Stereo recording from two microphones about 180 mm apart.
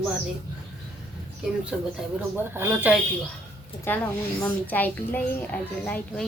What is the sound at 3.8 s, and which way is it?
A woman's voice, 10° left (ahead or behind).